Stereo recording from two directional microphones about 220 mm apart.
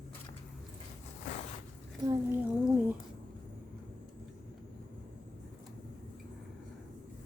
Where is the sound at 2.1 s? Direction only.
10° right (ahead or behind).